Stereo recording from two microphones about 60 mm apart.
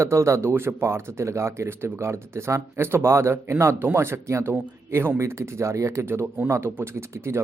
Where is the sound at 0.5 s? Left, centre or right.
Right.